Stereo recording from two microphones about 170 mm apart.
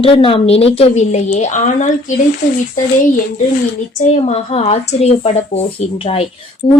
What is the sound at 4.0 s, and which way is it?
Speech, 40° left (ahead or behind).